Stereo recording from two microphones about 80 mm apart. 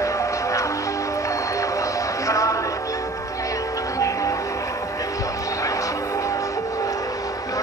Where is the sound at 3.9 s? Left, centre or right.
Left.